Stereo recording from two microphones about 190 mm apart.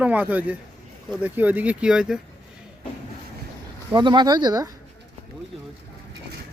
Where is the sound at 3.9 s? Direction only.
25° right (ahead or behind).